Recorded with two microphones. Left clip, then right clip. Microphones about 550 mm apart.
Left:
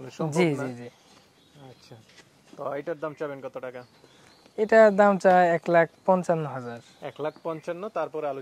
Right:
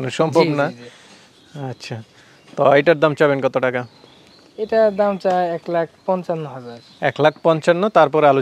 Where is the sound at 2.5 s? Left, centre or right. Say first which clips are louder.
Right 19 dB; right.